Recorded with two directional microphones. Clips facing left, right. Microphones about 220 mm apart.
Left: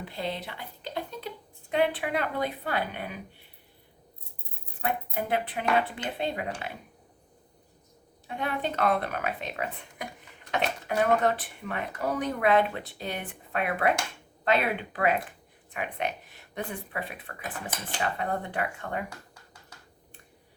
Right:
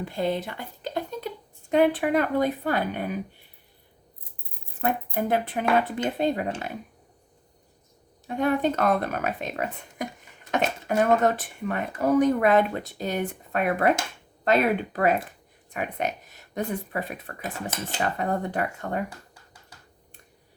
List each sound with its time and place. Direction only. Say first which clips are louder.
0.0 s a sound: right 7 dB; 45° right (ahead or behind)
1.7 s speech: right 6 dB; 45° right (ahead or behind)
4.8 s speech: right 5 dB; 45° right (ahead or behind)
8.3 s speech: right 8 dB; 45° right (ahead or behind)